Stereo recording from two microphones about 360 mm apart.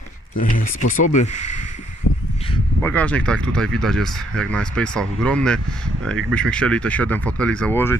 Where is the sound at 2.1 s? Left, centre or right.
Left.